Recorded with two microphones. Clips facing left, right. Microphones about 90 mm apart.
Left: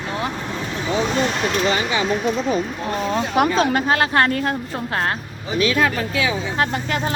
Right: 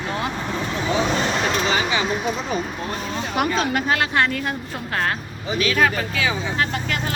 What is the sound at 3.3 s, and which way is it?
Speech, 35° left (ahead or behind).